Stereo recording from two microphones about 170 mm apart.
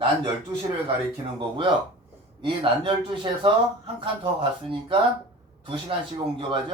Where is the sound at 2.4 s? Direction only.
30° right (ahead or behind).